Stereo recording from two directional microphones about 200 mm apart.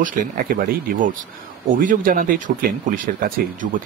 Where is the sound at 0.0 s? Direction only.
45° right (ahead or behind).